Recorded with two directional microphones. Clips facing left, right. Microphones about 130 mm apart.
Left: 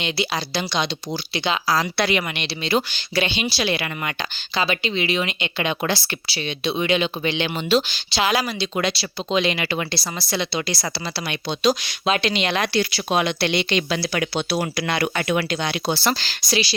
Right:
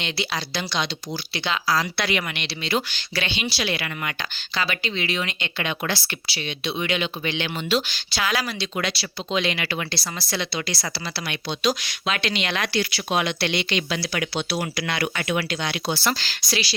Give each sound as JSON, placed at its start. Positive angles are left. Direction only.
{"t": 0.0, "sound": "speech", "side_deg": 15}
{"t": 5.8, "sound": "speech", "side_deg": 30}
{"t": 13.7, "sound": "speech", "side_deg": 40}
{"t": 15.4, "sound": "speech", "side_deg": 30}